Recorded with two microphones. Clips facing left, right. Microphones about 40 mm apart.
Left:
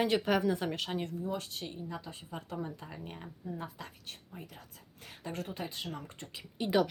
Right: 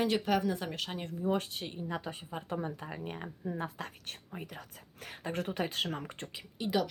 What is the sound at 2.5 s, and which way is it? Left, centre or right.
Speech, right.